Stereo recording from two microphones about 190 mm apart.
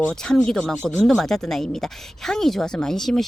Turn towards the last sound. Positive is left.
turn(degrees=0)  # may be behind; listen again after turning